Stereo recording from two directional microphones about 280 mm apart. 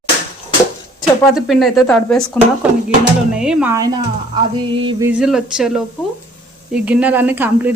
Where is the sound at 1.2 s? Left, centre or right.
Centre.